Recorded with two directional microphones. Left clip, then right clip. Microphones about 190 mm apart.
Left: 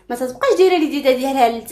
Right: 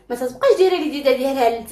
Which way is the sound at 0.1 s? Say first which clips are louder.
Right 1 dB; 40° left (ahead or behind).